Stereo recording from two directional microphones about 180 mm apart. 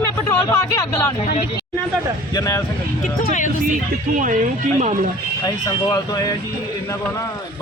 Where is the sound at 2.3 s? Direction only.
15° left (ahead or behind).